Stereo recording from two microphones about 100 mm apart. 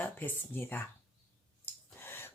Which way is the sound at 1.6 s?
25° left (ahead or behind).